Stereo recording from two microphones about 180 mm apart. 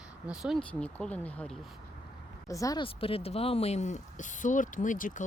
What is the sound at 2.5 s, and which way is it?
Speech, 20° left (ahead or behind).